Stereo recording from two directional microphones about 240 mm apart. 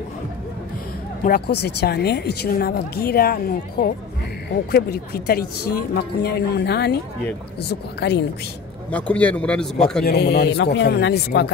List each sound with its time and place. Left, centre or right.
1.2 s speech: left
8.0 s speech: left
8.9 s a man's voice: centre
10.0 s speech: left